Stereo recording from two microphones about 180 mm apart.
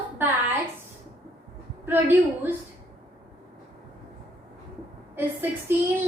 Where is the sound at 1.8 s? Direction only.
10° right (ahead or behind).